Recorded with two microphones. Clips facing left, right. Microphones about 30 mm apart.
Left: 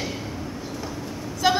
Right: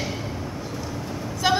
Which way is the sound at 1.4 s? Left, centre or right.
Centre.